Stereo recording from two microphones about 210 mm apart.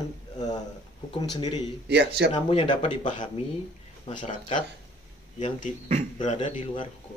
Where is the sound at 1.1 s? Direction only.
20° left (ahead or behind).